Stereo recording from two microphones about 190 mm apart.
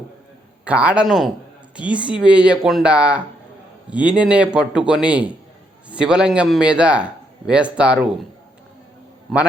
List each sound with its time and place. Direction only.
0.6 s a man's voice: 5° right (ahead or behind)
9.3 s a man's voice: centre (ahead or behind)